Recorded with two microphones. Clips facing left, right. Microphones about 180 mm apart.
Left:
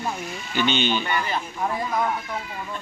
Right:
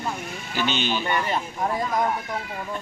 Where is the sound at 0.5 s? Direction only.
Centre (ahead or behind).